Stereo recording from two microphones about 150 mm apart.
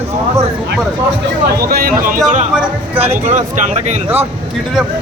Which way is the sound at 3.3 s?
50° right (ahead or behind).